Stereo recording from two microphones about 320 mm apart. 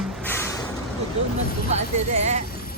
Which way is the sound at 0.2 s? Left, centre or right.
Centre.